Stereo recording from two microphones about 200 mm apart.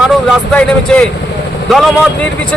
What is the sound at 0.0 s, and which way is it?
A man's voice, centre (ahead or behind).